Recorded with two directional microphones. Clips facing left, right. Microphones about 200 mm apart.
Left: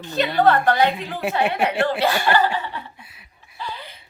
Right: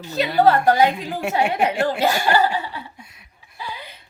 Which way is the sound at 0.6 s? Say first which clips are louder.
Right 2 dB; 40° right (ahead or behind).